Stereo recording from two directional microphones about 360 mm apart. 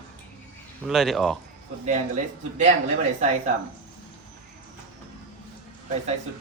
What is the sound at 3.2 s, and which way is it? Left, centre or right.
Speech, centre.